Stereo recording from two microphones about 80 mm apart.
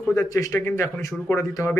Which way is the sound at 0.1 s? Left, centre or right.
Left.